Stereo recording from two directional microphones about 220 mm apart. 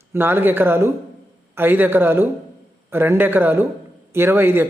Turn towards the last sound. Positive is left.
turn(degrees=-10)  # may be behind; listen again after turning